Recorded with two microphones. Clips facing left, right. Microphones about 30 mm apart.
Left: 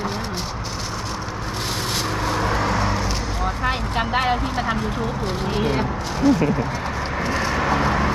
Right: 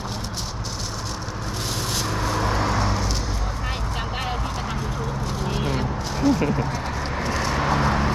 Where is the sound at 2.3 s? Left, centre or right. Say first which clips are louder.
Left 2 dB; left.